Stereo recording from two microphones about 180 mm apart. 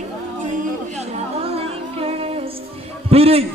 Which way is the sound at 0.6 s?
35° right (ahead or behind).